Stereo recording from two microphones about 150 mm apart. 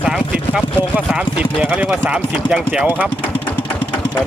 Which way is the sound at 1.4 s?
10° right (ahead or behind).